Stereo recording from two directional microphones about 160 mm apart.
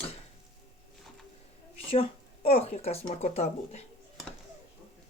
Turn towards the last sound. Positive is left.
turn(degrees=45)  # may be behind; listen again after turning